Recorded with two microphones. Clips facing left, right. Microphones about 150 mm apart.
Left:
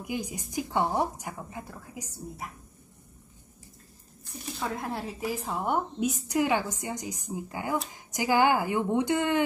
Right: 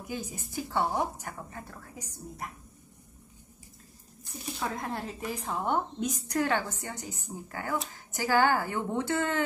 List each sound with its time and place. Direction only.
0.0 s speech: 15° left (ahead or behind)
4.3 s speech: centre (ahead or behind); by 9.4 s 15° left (ahead or behind)